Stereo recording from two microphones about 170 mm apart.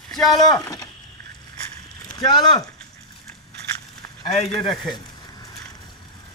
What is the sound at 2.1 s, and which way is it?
Speech, 25° left (ahead or behind).